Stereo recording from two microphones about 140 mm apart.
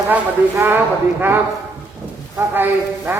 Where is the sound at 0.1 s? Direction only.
15° right (ahead or behind).